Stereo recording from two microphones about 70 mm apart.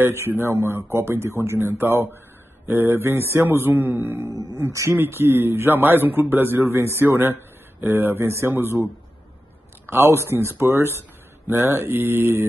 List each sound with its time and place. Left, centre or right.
0.0 s a man's voice: right
4.6 s a man's voice: right
9.8 s a man's voice: right